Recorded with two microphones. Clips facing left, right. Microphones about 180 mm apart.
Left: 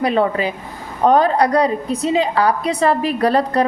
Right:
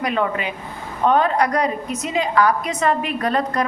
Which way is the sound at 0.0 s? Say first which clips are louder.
Left 5 dB; 35° left (ahead or behind).